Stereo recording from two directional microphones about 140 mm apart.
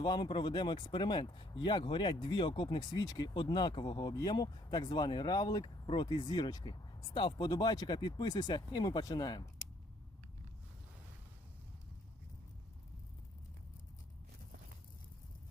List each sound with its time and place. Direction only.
0.0 s speech: 30° left (ahead or behind)